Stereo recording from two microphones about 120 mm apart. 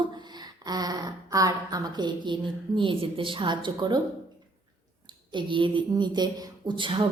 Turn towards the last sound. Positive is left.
turn(degrees=-45)  # may be behind; listen again after turning